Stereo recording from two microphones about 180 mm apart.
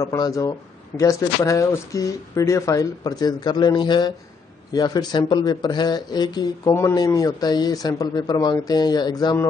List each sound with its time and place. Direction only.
0.0 s speech: 20° left (ahead or behind)